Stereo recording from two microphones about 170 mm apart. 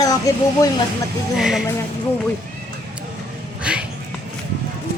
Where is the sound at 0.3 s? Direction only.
20° left (ahead or behind).